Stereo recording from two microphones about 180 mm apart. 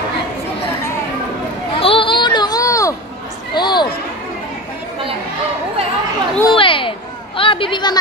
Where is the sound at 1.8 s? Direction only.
30° left (ahead or behind).